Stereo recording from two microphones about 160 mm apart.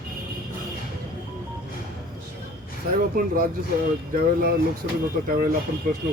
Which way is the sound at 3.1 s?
60° right (ahead or behind).